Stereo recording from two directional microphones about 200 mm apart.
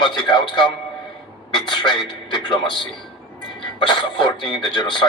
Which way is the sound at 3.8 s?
25° left (ahead or behind).